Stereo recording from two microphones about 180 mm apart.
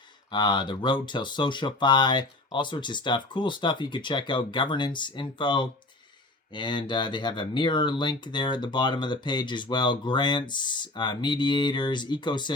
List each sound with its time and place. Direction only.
0.3 s speech: 25° left (ahead or behind)